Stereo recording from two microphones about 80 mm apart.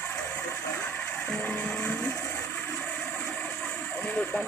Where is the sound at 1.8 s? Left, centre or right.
Centre.